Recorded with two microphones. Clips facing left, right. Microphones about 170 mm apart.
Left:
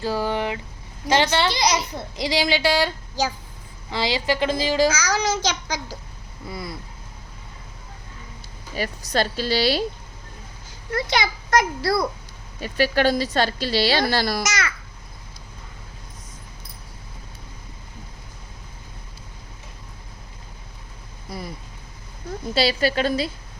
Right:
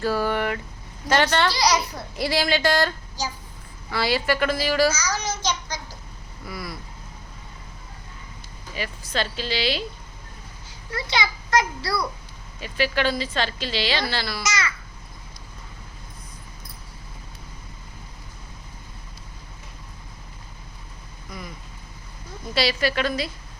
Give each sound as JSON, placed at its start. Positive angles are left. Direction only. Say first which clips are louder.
{"t": 0.0, "sound": "a child's voice", "louder": "even", "side_deg": 15}
{"t": 4.9, "sound": "a child's voice", "louder": "left 5 dB", "side_deg": 80}
{"t": 6.5, "sound": "a woman's voice", "louder": "left 1 dB", "side_deg": 25}
{"t": 8.7, "sound": "a woman's voice", "louder": "left 5 dB", "side_deg": 40}
{"t": 10.9, "sound": "speech", "louder": "left 3 dB", "side_deg": 45}
{"t": 21.2, "sound": "a sound", "louder": "left 4 dB", "side_deg": 35}
{"t": 22.5, "sound": "a woman's voice", "louder": "left 2 dB", "side_deg": 30}